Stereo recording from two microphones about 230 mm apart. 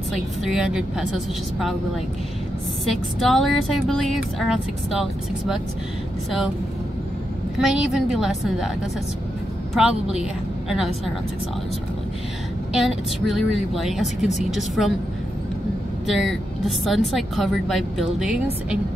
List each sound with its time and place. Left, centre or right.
0.5 s speech: centre
2.8 s speech: centre
7.5 s speech: centre
9.8 s speech: centre
12.7 s speech: centre
16.1 s speech: centre